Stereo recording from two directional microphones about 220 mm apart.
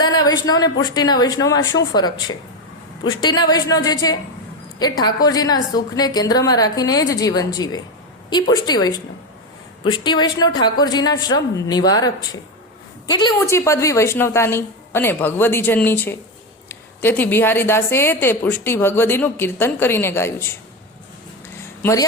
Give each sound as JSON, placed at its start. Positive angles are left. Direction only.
{"t": 0.0, "sound": "a woman's voice", "side_deg": 20}
{"t": 21.8, "sound": "speech", "side_deg": 15}